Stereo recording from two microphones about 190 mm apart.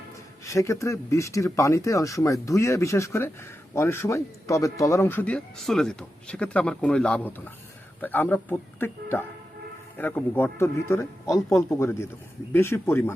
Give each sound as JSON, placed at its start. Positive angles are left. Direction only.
{"t": 0.4, "sound": "speech", "side_deg": 15}